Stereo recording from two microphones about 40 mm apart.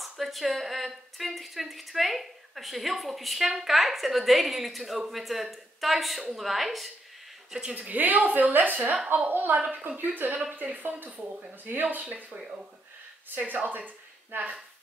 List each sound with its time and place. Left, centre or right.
0.0 s a woman's voice: centre
7.8 s a woman's voice: right